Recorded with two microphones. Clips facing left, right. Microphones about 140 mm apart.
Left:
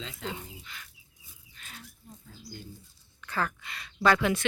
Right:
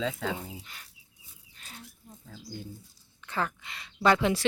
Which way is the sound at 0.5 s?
35° right (ahead or behind).